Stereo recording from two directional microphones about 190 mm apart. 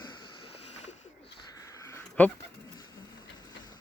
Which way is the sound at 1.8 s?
10° left (ahead or behind).